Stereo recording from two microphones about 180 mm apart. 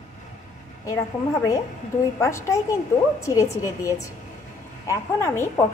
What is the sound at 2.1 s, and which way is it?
A woman's voice, 15° left (ahead or behind).